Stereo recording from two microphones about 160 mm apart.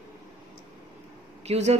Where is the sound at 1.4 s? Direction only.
40° right (ahead or behind).